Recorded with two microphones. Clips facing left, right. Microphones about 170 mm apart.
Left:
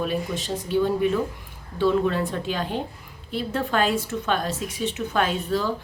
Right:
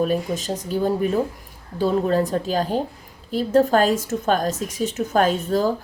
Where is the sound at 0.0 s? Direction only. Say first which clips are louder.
Right 5 dB; 40° right (ahead or behind).